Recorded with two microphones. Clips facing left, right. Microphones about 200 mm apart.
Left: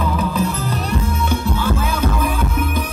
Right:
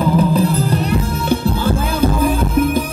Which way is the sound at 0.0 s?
35° right (ahead or behind).